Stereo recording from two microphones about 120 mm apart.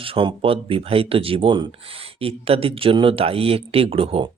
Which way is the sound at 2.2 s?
55° right (ahead or behind).